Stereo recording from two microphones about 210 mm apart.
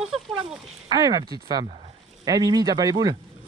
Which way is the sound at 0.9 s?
20° right (ahead or behind).